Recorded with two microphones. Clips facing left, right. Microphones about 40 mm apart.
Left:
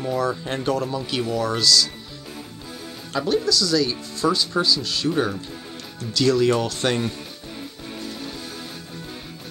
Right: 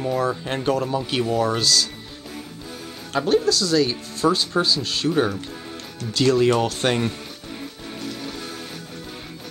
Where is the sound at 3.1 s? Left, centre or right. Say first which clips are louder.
Right 2 dB; right.